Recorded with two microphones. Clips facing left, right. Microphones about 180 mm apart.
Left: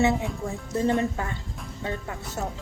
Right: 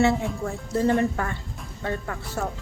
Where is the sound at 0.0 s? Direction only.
20° left (ahead or behind).